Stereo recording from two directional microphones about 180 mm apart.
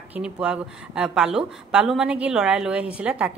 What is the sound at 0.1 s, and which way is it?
A woman's voice, 5° right (ahead or behind).